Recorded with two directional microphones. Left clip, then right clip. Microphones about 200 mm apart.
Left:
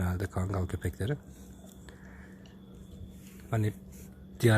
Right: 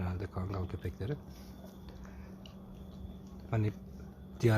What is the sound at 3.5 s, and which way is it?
A man's voice, 10° left (ahead or behind).